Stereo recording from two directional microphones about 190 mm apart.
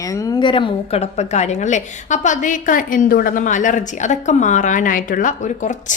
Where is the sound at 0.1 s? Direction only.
20° left (ahead or behind).